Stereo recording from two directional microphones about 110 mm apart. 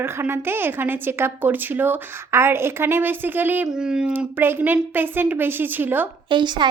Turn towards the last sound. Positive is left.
turn(degrees=-45)  # may be behind; listen again after turning